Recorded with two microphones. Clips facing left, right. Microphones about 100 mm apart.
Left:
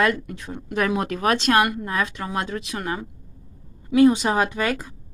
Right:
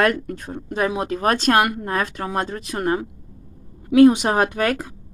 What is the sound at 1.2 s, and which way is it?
Speech, 45° right (ahead or behind).